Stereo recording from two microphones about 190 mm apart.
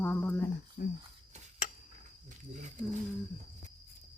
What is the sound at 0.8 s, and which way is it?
Speech, 50° left (ahead or behind).